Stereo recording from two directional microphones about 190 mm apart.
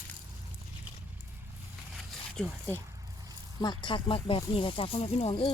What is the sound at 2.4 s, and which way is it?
Speech, 5° left (ahead or behind).